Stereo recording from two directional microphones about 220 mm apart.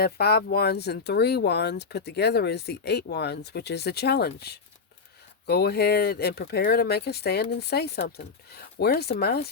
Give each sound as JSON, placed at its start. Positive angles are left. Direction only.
{"t": 0.0, "sound": "speech", "side_deg": 45}